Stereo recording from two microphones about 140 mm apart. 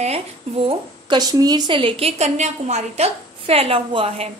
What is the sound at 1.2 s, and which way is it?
A woman's voice, 30° right (ahead or behind).